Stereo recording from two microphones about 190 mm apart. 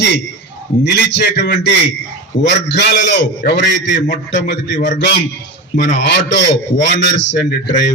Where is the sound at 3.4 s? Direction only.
65° left (ahead or behind).